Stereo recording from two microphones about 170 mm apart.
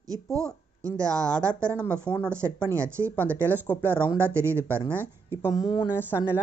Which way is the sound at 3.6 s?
10° left (ahead or behind).